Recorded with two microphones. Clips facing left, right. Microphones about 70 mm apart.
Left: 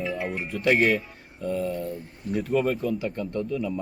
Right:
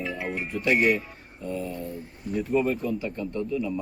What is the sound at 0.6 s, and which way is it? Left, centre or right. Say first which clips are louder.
Speech: left 1 dB; left.